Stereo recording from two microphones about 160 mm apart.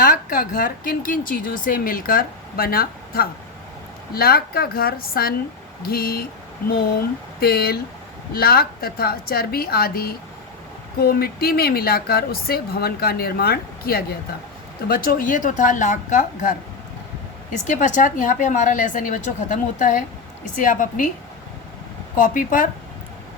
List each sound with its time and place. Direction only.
0.0 s a woman's voice: 60° left (ahead or behind)
7.3 s speech: 75° left (ahead or behind)
14.8 s a woman's voice: 65° left (ahead or behind)
17.7 s a woman's voice: 55° left (ahead or behind)
22.1 s a woman's voice: 55° left (ahead or behind)